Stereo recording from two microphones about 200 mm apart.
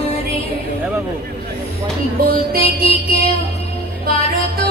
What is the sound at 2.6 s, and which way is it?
Music, 30° left (ahead or behind).